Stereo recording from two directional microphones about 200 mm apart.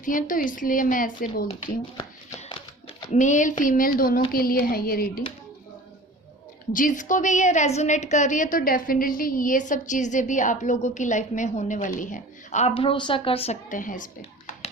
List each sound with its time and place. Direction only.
0.0 s a woman's voice: 40° left (ahead or behind)
1.6 s a sound: 20° left (ahead or behind)
3.1 s a woman's voice: 40° left (ahead or behind)
6.7 s a woman's voice: 40° left (ahead or behind)